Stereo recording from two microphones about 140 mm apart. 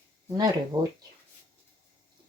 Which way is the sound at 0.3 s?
30° right (ahead or behind).